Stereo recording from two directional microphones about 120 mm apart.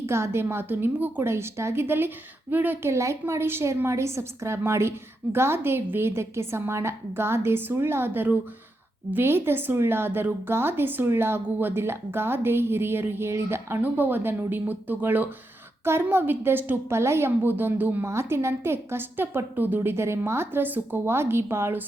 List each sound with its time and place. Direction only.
0.0 s a woman's voice: 20° right (ahead or behind)